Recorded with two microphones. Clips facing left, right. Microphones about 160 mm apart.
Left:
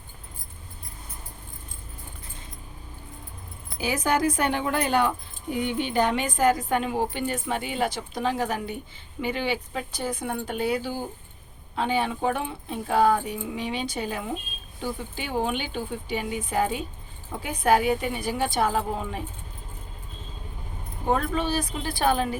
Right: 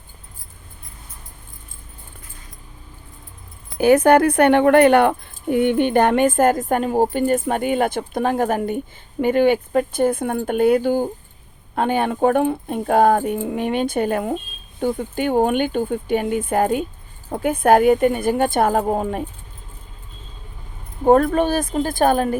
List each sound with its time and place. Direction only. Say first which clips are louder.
3.8 s speech: right 12 dB; 55° right (ahead or behind)
21.1 s speech: right 10 dB; 50° right (ahead or behind)